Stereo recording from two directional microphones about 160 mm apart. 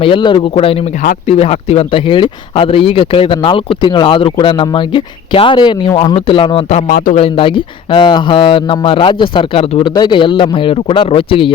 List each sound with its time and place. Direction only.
0.0 s speech: 30° left (ahead or behind)
6.8 s a man's voice: 60° left (ahead or behind)
7.2 s speech: 30° left (ahead or behind)